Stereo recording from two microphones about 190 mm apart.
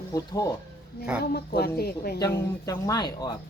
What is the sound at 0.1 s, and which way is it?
Speech, 15° left (ahead or behind).